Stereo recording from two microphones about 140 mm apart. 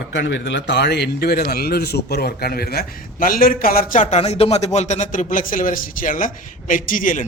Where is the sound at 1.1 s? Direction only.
90° left.